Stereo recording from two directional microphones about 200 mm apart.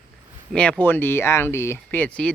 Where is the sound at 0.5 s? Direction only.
5° left (ahead or behind).